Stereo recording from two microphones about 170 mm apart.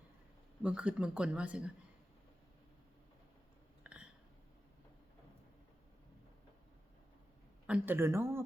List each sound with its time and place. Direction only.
0.6 s speech: 5° right (ahead or behind)
3.9 s a sound: 5° right (ahead or behind)
7.7 s speech: 15° right (ahead or behind)